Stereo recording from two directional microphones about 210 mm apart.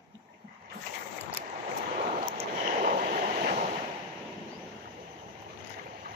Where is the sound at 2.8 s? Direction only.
40° right (ahead or behind).